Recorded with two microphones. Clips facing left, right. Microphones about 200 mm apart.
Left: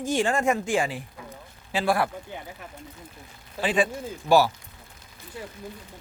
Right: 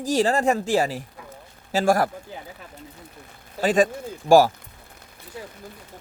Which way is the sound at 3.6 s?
45° right (ahead or behind).